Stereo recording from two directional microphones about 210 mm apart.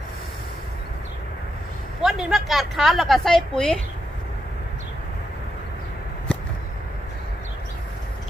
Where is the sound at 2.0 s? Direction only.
Centre (ahead or behind).